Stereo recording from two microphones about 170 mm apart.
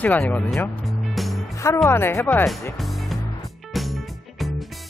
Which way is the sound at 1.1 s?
Centre (ahead or behind).